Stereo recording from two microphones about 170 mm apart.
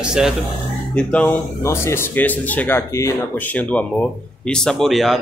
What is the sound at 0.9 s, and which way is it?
A man's voice, 10° left (ahead or behind).